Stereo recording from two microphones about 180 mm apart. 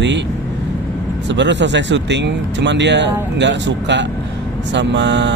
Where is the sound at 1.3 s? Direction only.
80° right.